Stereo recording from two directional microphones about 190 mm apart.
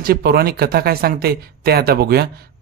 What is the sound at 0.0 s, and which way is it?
Speech, 55° right (ahead or behind).